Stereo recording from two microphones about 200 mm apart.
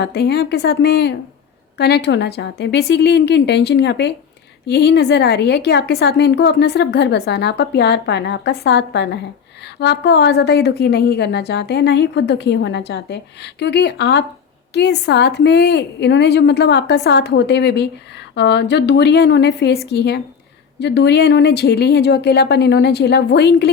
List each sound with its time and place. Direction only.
0.0 s a woman's voice: 55° left (ahead or behind)